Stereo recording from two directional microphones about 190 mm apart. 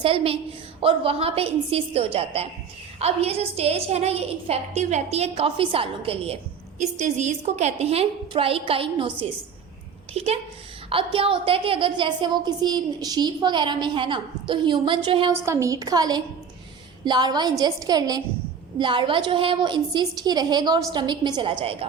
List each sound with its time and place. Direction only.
0.0 s a woman's voice: 30° right (ahead or behind)
10.2 s a woman's voice: 35° right (ahead or behind)
15.4 s a woman's voice: 15° right (ahead or behind)